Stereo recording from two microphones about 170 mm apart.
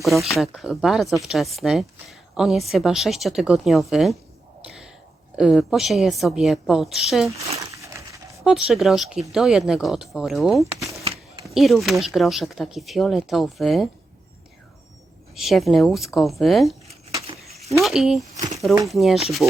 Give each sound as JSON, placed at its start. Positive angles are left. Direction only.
{"t": 0.0, "sound": "speech", "side_deg": 0}
{"t": 5.4, "sound": "speech", "side_deg": 0}
{"t": 7.7, "sound": "a sound", "side_deg": -20}
{"t": 8.4, "sound": "speech", "side_deg": -5}
{"t": 11.0, "sound": "a sound", "side_deg": -35}
{"t": 11.4, "sound": "speech", "side_deg": 0}
{"t": 15.4, "sound": "speech", "side_deg": 0}
{"t": 17.7, "sound": "speech", "side_deg": 0}